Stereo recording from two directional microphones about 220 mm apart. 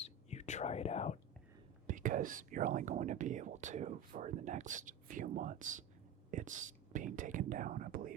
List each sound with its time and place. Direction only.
0.0 s whispering: 30° left (ahead or behind)
1.9 s speech: 35° right (ahead or behind)